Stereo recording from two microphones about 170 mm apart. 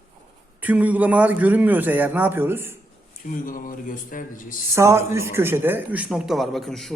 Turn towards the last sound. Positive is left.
turn(degrees=0)  # may be behind; listen again after turning